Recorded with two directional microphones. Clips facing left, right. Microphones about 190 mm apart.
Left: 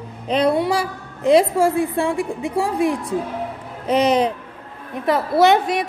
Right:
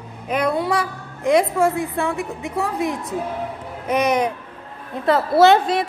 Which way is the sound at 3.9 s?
30° left (ahead or behind).